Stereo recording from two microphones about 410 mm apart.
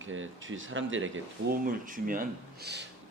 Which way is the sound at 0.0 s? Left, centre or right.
Right.